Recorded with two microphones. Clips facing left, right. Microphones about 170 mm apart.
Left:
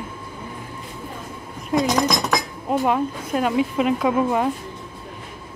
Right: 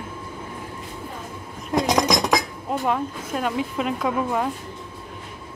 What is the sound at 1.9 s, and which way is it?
Chink, 15° right (ahead or behind).